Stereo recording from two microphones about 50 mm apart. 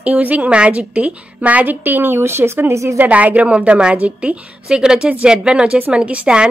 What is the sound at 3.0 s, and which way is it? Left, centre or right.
A woman's voice, right.